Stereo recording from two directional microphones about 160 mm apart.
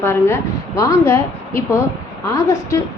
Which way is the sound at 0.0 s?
15° left (ahead or behind).